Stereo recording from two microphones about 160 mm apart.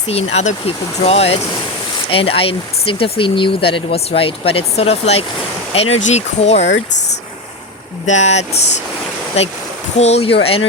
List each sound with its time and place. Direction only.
0.1 s speech: 40° left (ahead or behind)
6.6 s speech: 90° left
8.0 s speech: 45° left (ahead or behind)
10.0 s speech: 40° left (ahead or behind)